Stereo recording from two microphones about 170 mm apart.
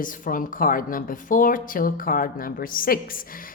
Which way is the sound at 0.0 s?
55° left (ahead or behind).